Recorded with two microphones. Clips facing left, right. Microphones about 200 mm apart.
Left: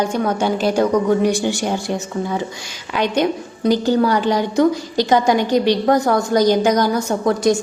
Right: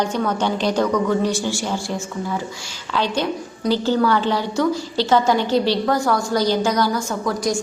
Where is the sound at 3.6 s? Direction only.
15° left (ahead or behind).